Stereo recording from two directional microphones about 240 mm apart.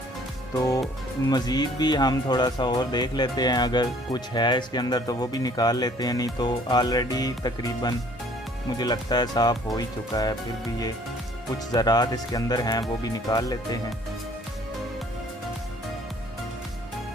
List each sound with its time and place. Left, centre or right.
0.5 s speech: centre
11.7 s speech: centre